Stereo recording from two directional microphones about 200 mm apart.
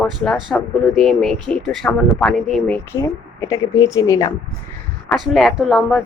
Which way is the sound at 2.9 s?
15° left (ahead or behind).